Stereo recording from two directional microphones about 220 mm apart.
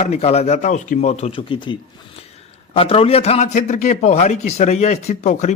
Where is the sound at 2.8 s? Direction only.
25° left (ahead or behind).